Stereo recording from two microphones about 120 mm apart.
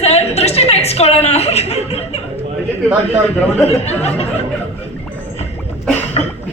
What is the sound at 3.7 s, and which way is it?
Speech, 60° left (ahead or behind).